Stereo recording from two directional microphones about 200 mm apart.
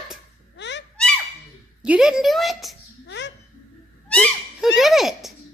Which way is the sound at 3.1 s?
60° left (ahead or behind).